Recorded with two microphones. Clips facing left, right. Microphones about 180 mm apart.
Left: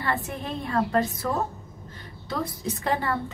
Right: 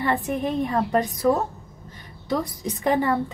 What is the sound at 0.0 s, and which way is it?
A woman's voice, 15° right (ahead or behind).